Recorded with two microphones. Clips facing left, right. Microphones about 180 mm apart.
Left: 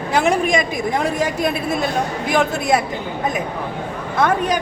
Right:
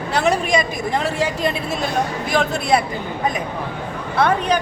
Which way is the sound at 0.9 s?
10° left (ahead or behind).